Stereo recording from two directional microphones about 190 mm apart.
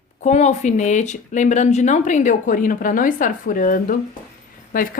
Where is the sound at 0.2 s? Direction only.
35° left (ahead or behind).